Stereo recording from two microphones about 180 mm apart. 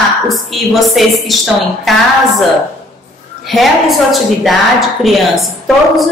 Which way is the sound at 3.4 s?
Centre (ahead or behind).